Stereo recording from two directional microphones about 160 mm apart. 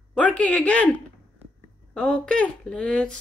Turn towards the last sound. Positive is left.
turn(degrees=5)  # may be behind; listen again after turning